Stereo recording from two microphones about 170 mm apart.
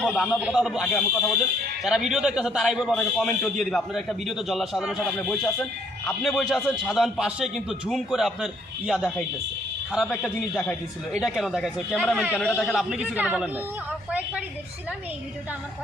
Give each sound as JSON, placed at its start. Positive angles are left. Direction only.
{"t": 0.0, "sound": "a man's voice", "side_deg": 5}